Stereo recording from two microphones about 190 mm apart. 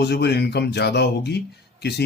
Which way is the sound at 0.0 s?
60° left (ahead or behind).